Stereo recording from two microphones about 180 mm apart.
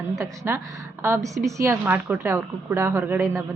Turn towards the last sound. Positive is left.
turn(degrees=-10)  # may be behind; listen again after turning